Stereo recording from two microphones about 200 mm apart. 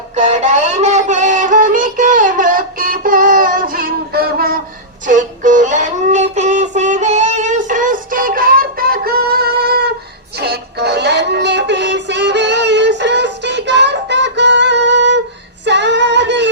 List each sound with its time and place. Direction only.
0.2 s music: 35° right (ahead or behind); by 4.5 s 50° right (ahead or behind)
5.0 s music: 40° right (ahead or behind); by 15.2 s 60° right (ahead or behind)
15.6 s female singing: 60° right (ahead or behind)